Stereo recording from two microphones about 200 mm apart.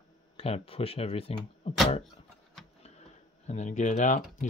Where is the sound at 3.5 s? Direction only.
35° left (ahead or behind).